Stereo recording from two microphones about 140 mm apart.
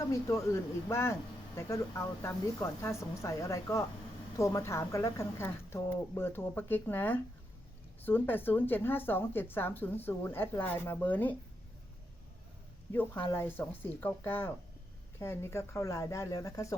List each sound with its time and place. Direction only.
0.0 s a woman's voice: 20° left (ahead or behind)
12.9 s a woman's voice: 15° left (ahead or behind)